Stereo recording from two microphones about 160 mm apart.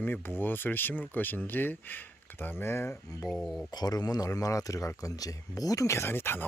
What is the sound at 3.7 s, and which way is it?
Speech, 25° left (ahead or behind).